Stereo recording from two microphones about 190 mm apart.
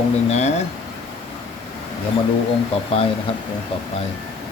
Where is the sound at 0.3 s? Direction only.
35° left (ahead or behind).